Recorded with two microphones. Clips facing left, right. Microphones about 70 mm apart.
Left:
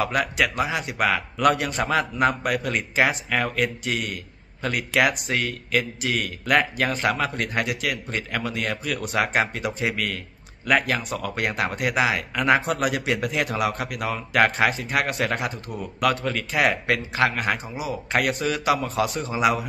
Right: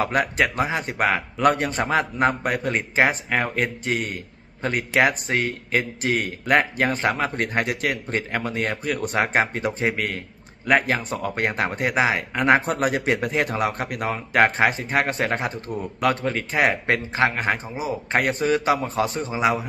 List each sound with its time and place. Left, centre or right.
0.0 s a man's voice: right